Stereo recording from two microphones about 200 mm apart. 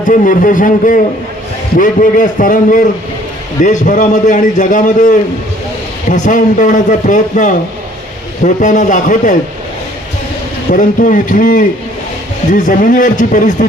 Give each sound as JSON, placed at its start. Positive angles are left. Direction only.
{"t": 0.0, "sound": "a man's voice", "side_deg": 40}
{"t": 10.7, "sound": "a man's voice", "side_deg": 40}